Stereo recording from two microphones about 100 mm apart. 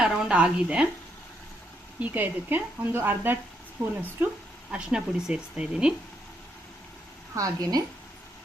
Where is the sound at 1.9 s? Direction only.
20° right (ahead or behind).